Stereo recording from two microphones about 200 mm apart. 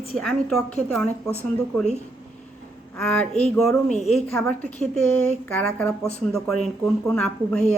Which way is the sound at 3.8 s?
35° left (ahead or behind).